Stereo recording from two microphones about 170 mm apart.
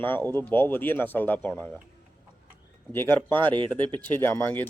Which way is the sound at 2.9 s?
10° left (ahead or behind).